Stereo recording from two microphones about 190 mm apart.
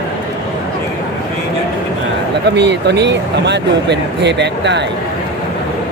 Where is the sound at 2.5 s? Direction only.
65° right (ahead or behind).